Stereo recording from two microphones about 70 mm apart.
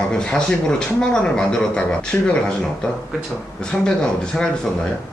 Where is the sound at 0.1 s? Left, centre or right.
Centre.